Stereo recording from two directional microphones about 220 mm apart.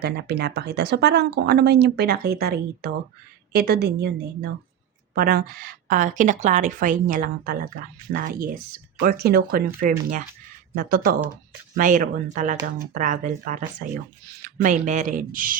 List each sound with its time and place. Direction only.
0.0 s a woman's voice: 45° right (ahead or behind)